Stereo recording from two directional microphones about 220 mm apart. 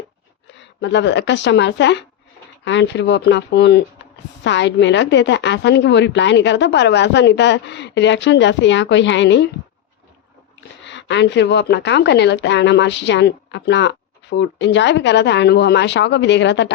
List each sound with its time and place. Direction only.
0.8 s a woman's voice: 55° left (ahead or behind)
10.8 s a woman's voice: 55° left (ahead or behind)